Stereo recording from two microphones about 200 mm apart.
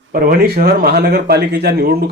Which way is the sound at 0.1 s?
50° right (ahead or behind).